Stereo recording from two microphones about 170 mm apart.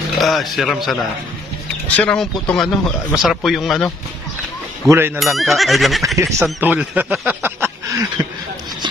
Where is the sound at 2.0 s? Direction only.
5° left (ahead or behind).